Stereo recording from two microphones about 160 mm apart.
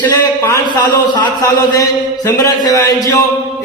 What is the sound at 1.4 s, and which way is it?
A man's voice, 20° left (ahead or behind).